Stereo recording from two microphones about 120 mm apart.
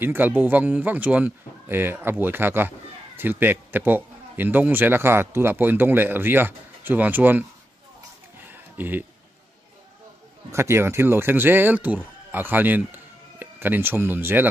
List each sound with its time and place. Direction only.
0.0 s a man's voice: 15° right (ahead or behind)
8.4 s a sound: 15° right (ahead or behind)
10.5 s speech: 20° right (ahead or behind)